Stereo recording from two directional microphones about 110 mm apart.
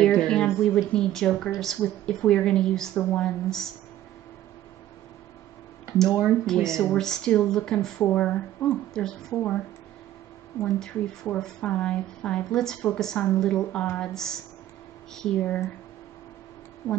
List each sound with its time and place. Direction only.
0.2 s a sound: 5° left (ahead or behind)
0.9 s speech: 5° left (ahead or behind)
3.0 s speech: 15° left (ahead or behind)
3.3 s speech: 5° left (ahead or behind)
6.4 s speech: 5° left (ahead or behind)
10.6 s speech: 10° left (ahead or behind)